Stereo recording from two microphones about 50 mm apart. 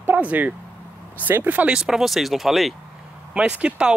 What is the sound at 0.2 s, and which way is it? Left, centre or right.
Speech, right.